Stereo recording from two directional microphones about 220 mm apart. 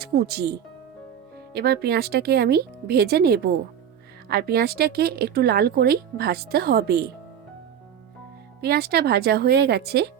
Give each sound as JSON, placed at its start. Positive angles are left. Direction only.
{"t": 0.0, "sound": "speech", "side_deg": -45}
{"t": 8.6, "sound": "speech", "side_deg": -45}